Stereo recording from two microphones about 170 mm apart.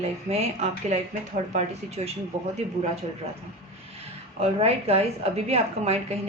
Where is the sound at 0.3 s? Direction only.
40° right (ahead or behind).